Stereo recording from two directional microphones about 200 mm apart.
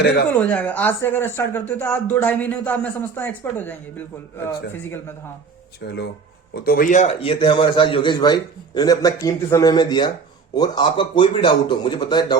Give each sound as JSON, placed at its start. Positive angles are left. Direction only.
{"t": 0.3, "sound": "speech", "side_deg": 5}
{"t": 5.8, "sound": "a man's voice", "side_deg": 55}